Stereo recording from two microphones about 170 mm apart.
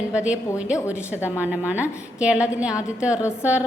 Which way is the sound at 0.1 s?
5° right (ahead or behind).